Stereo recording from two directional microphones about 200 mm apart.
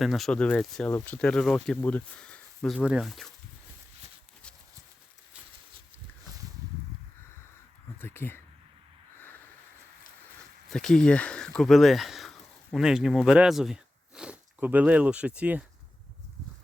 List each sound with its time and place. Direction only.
0.0 s speech: centre (ahead or behind)
7.9 s speech: 10° left (ahead or behind)
10.7 s speech: centre (ahead or behind)